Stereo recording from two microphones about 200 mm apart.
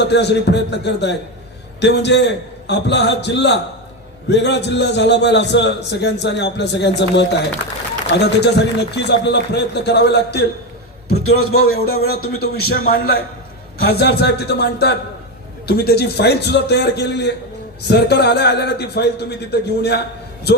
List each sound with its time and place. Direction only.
0.0 s a man's voice: 60° left (ahead or behind)
11.2 s a man's voice: 90° left
11.6 s a man's voice: 50° left (ahead or behind)